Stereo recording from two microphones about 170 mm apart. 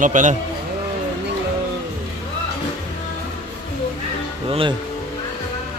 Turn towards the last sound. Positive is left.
turn(degrees=-30)  # may be behind; listen again after turning